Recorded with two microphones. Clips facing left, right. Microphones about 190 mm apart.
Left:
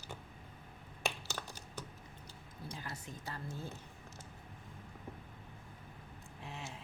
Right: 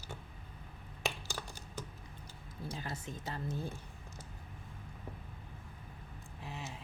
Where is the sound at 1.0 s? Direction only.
10° right (ahead or behind).